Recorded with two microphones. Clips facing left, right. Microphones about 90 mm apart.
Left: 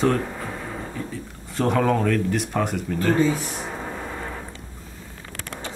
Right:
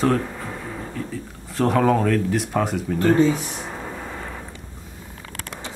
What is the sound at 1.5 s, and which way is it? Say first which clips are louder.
Speech: right 2 dB; centre (ahead or behind).